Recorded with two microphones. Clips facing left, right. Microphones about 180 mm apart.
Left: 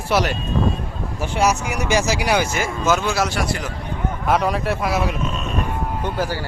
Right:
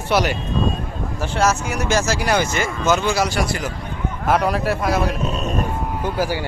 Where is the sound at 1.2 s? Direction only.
15° left (ahead or behind).